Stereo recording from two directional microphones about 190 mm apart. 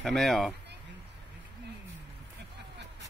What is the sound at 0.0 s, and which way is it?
Speech, centre (ahead or behind).